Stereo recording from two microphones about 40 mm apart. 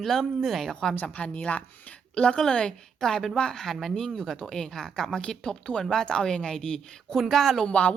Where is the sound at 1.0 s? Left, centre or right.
Left.